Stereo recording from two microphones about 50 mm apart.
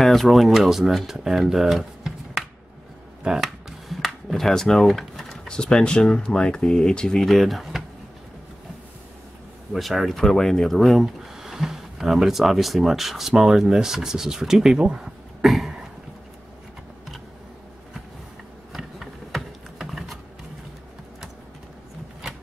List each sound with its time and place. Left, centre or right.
0.0 s speech: centre
7.2 s speech: centre
9.7 s speech: centre
15.4 s cough: centre
19.8 s a sound: centre